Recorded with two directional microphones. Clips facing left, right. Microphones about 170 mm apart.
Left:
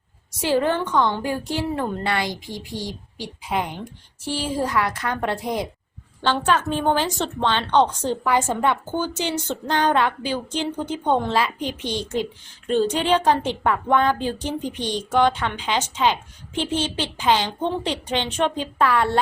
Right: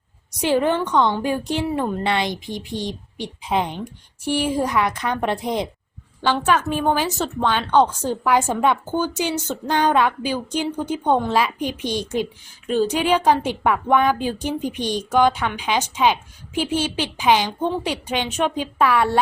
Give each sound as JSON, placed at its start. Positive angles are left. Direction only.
{"t": 0.3, "sound": "a woman's voice", "side_deg": -15}